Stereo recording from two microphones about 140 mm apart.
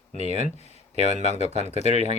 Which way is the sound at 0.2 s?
50° right (ahead or behind).